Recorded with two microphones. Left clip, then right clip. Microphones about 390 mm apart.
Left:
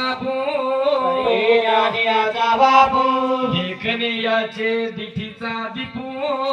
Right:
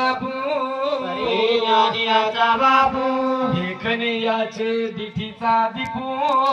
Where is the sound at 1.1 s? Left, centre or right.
Centre.